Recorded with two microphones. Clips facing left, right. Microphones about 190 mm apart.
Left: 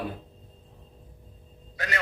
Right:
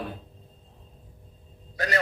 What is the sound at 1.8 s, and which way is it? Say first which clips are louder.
Speech: right 6 dB; 35° right (ahead or behind).